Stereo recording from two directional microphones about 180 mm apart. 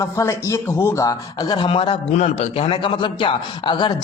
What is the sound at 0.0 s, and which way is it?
A man's voice, 15° left (ahead or behind).